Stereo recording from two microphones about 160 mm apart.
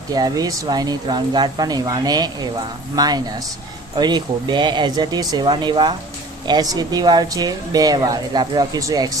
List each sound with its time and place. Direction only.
0.1 s speech: 25° right (ahead or behind)